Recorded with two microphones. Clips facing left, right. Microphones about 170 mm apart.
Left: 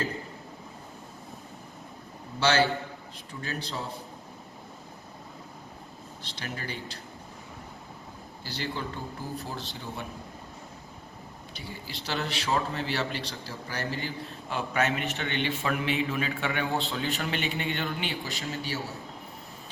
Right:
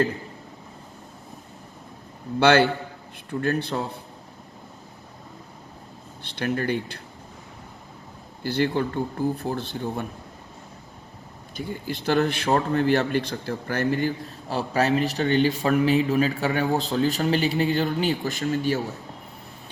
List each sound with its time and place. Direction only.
2.4 s speech: 55° right (ahead or behind)
6.2 s speech: 60° right (ahead or behind)
8.4 s speech: 55° right (ahead or behind)
11.5 s a man's voice: 50° right (ahead or behind)
14.5 s a man's voice: 35° right (ahead or behind)